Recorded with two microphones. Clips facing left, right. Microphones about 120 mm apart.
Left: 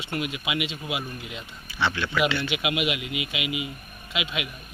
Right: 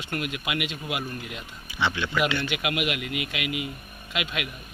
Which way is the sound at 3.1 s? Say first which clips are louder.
Even; 50° right (ahead or behind).